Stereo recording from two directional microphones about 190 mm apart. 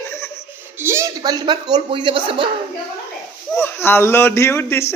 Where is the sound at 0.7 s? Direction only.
15° right (ahead or behind).